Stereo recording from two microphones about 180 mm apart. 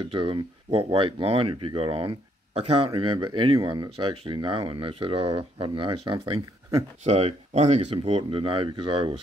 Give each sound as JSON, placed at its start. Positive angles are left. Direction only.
{"t": 0.1, "sound": "speech", "side_deg": -30}